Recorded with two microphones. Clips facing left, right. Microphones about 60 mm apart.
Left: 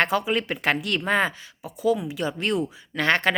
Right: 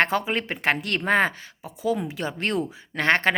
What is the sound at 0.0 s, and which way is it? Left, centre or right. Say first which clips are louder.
Speech: even; right.